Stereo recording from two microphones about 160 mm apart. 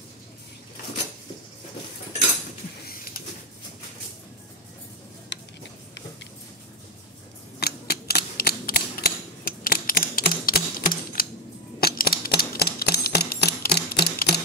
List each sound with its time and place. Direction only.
7.6 s typewriter: 90° left